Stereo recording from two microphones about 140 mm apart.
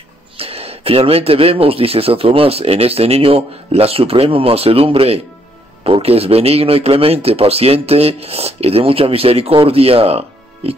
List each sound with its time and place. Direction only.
0.4 s speech: 45° right (ahead or behind)